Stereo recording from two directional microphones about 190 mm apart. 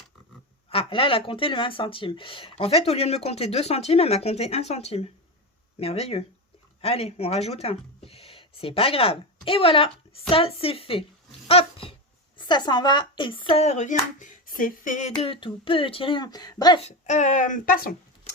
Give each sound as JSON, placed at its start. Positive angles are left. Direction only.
{"t": 0.7, "sound": "speech", "side_deg": 30}
{"t": 16.8, "sound": "speech", "side_deg": 40}